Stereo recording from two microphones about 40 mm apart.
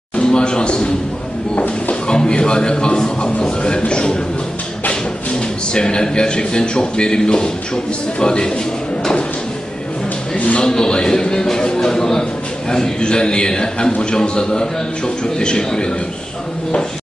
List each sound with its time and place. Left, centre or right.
0.1 s a sound: left
5.7 s speech: left
10.3 s speech: left
10.6 s a man's voice: centre